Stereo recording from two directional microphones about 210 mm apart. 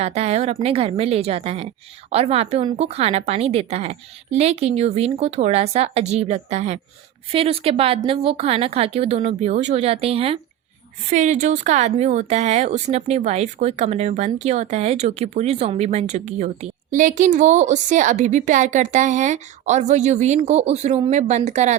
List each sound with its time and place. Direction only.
0.0 s a woman's voice: 30° right (ahead or behind)